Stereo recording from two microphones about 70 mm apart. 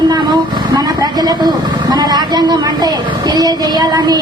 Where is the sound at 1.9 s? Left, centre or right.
Right.